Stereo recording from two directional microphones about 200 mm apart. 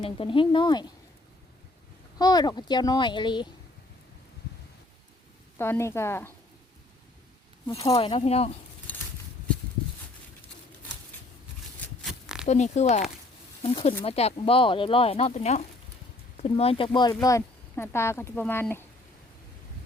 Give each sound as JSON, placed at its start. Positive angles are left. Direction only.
{"t": 0.0, "sound": "speech", "side_deg": 25}
{"t": 2.1, "sound": "speech", "side_deg": 20}
{"t": 5.5, "sound": "speech", "side_deg": 10}
{"t": 7.9, "sound": "speech", "side_deg": 30}
{"t": 12.5, "sound": "speech", "side_deg": 35}